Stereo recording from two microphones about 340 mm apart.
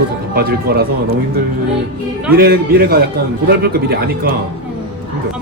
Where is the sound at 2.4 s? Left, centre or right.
Right.